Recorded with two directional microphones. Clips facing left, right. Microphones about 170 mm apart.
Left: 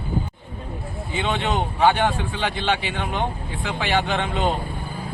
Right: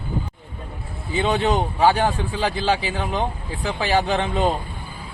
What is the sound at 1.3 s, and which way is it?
Speech, 35° right (ahead or behind).